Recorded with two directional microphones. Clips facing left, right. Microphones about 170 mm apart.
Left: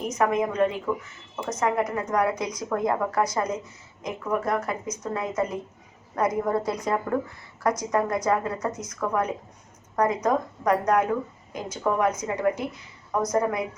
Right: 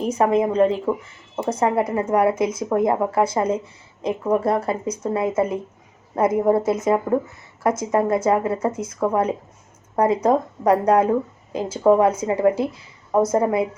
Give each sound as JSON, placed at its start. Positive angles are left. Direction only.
{"t": 0.0, "sound": "a woman's voice", "side_deg": -30}